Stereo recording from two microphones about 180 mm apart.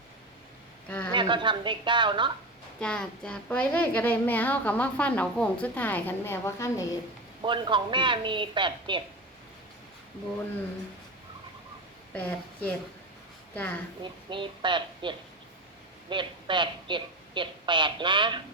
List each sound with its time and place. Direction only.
0.9 s a sound: 10° left (ahead or behind)
1.1 s a woman's voice: 25° right (ahead or behind)
2.8 s a woman's voice: 5° left (ahead or behind)
7.4 s a woman's voice: 25° right (ahead or behind)
12.1 s a woman's voice: 10° left (ahead or behind)
14.0 s a woman's voice: 25° right (ahead or behind)